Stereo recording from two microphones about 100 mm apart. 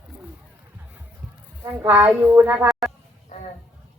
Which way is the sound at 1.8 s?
15° right (ahead or behind).